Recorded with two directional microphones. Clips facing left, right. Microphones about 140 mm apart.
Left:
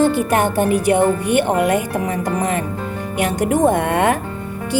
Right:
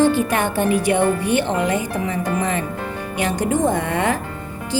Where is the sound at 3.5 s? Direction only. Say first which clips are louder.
Left 5 dB; 55° left (ahead or behind).